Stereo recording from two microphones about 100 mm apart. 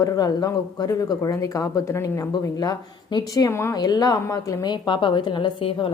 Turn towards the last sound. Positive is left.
turn(degrees=60)  # may be behind; listen again after turning